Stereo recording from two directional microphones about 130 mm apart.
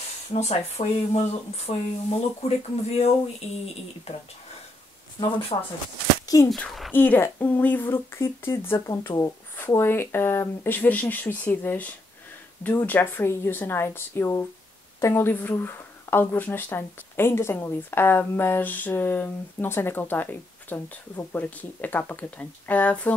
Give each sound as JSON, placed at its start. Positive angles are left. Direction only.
{"t": 0.3, "sound": "speech", "side_deg": 55}
{"t": 5.5, "sound": "speech", "side_deg": 45}
{"t": 6.2, "sound": "speech", "side_deg": 25}
{"t": 6.5, "sound": "speech", "side_deg": 0}
{"t": 6.9, "sound": "speech", "side_deg": 15}